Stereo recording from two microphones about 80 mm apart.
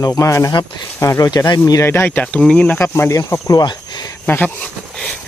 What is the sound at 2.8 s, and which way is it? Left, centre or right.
Speech, left.